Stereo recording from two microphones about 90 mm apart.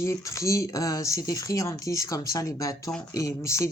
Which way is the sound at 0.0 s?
35° left (ahead or behind).